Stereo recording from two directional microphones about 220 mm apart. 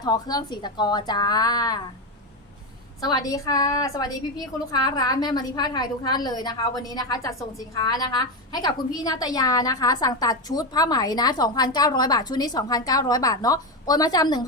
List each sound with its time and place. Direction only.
0.0 s a woman's voice: 20° left (ahead or behind)
3.0 s a woman's voice: 15° left (ahead or behind)